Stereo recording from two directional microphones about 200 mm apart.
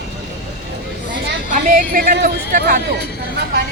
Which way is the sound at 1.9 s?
45° right (ahead or behind).